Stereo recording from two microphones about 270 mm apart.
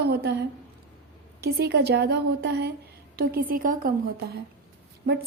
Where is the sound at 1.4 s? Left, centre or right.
Right.